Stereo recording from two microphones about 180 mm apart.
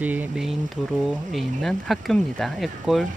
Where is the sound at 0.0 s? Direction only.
10° right (ahead or behind).